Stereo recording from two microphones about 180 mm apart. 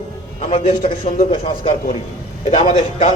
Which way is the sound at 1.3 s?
30° left (ahead or behind).